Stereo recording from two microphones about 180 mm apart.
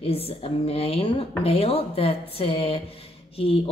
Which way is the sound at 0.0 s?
30° left (ahead or behind).